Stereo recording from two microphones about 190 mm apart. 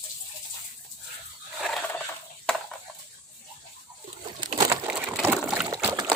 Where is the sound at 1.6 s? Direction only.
5° left (ahead or behind).